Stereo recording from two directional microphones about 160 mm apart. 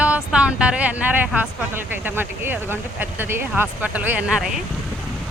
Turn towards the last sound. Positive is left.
turn(degrees=-5)  # may be behind; listen again after turning